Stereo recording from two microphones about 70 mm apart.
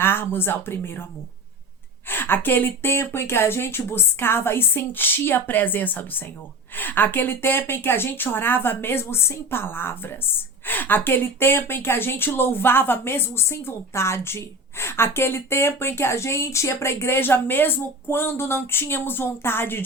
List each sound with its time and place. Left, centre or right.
0.0 s speech: left
2.0 s speech: left